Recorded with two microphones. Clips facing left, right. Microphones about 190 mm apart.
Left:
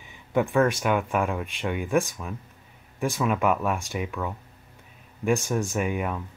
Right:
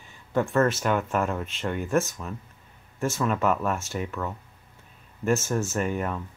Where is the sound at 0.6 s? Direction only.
10° left (ahead or behind).